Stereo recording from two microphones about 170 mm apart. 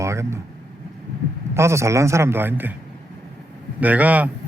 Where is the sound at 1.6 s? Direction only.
15° right (ahead or behind).